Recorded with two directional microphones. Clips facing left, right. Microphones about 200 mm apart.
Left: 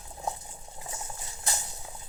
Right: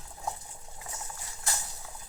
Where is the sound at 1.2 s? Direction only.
20° left (ahead or behind).